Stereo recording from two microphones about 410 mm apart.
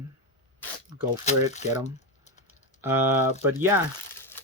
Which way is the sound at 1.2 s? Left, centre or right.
Centre.